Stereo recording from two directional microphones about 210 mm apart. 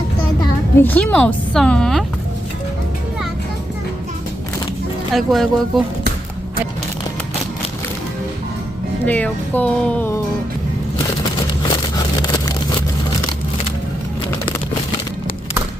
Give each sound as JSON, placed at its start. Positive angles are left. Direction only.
{"t": 0.8, "sound": "a woman's voice", "side_deg": 10}
{"t": 5.1, "sound": "a woman's voice", "side_deg": 0}
{"t": 9.0, "sound": "speech", "side_deg": 10}
{"t": 12.2, "sound": "a sound", "side_deg": 20}